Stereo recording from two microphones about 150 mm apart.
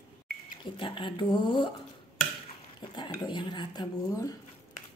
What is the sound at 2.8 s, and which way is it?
Speech, 30° left (ahead or behind).